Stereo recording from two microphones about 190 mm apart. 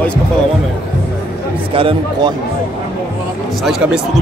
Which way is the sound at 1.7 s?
30° right (ahead or behind).